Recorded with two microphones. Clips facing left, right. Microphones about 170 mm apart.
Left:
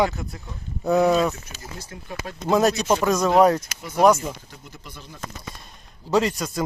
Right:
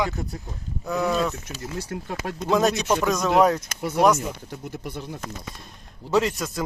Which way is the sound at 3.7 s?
60° right (ahead or behind).